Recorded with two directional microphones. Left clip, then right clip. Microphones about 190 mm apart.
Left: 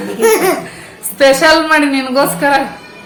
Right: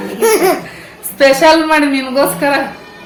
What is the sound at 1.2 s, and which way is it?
A woman's voice, 5° left (ahead or behind).